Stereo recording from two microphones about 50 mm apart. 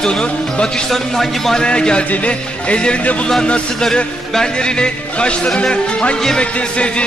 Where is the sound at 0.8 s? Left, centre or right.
Centre.